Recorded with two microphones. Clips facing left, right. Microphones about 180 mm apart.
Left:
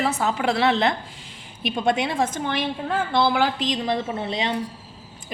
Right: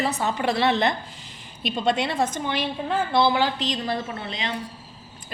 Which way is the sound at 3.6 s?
15° left (ahead or behind).